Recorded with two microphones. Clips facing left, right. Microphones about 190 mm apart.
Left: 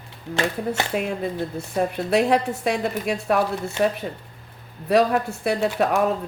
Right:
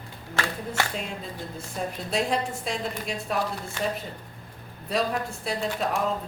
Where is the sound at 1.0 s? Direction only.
65° left (ahead or behind).